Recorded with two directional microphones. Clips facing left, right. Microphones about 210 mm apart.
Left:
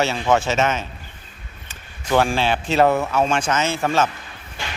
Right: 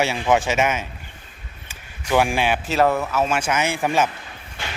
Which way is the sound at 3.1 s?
5° right (ahead or behind).